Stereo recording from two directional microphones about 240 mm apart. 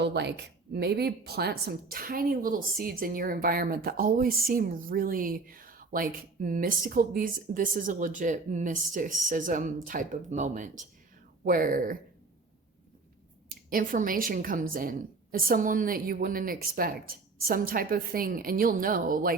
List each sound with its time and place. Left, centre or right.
0.0 s a woman's voice: right
13.7 s a woman's voice: right